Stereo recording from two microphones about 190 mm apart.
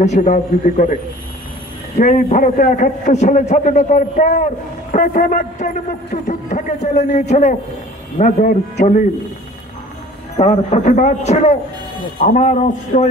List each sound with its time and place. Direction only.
0.0 s a man's voice: 40° left (ahead or behind)
2.0 s a man's voice: 40° left (ahead or behind)
10.3 s a man's voice: 35° left (ahead or behind)